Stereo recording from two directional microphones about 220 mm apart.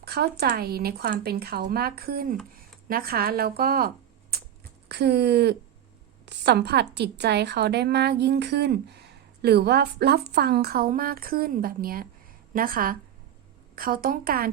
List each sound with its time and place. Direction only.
0.0 s speech: 45° right (ahead or behind)
6.2 s a sound: 50° right (ahead or behind)
6.9 s a woman's voice: 50° right (ahead or behind)